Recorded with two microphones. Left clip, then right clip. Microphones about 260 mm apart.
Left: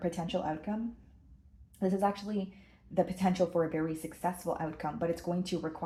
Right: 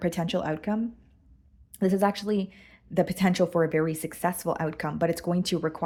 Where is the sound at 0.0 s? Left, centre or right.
Right.